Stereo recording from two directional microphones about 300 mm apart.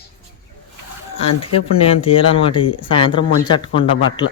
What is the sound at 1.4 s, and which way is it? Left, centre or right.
Speech, centre.